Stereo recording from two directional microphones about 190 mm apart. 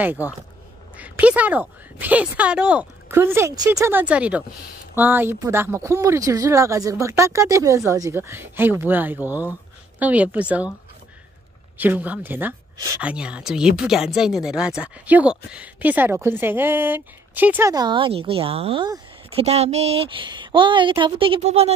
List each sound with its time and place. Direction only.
0.0 s speech: 10° right (ahead or behind)
11.8 s a woman's voice: 10° right (ahead or behind); by 21.7 s 35° right (ahead or behind)